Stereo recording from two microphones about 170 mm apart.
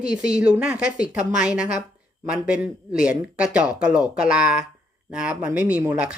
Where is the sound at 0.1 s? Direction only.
5° right (ahead or behind).